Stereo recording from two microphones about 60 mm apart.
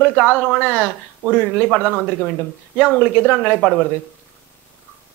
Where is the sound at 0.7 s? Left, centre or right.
Centre.